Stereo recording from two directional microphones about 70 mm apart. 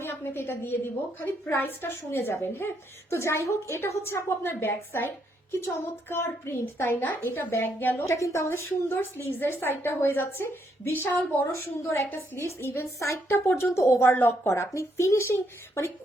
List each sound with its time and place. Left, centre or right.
0.0 s a woman's voice: left
8.0 s a woman's voice: left
13.2 s a woman's voice: left